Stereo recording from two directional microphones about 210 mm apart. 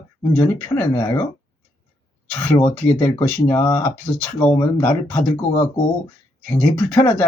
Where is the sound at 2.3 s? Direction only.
10° left (ahead or behind).